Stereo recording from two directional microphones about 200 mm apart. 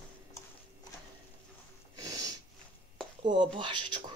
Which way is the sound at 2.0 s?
20° right (ahead or behind).